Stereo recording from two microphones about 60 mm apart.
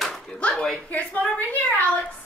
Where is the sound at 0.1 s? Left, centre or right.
Centre.